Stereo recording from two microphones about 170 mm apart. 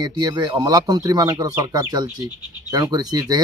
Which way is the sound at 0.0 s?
25° right (ahead or behind).